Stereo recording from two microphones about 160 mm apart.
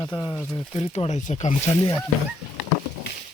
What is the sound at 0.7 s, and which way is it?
Speech, 40° left (ahead or behind).